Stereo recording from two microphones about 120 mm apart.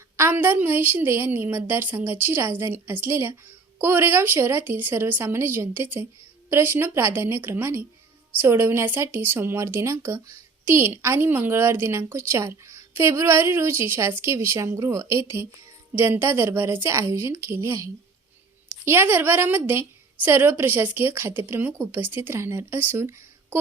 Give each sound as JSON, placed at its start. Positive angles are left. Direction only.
{"t": 0.2, "sound": "a woman's voice", "side_deg": -15}